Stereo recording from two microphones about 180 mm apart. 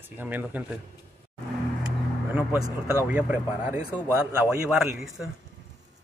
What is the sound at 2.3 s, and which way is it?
Speech, 10° right (ahead or behind).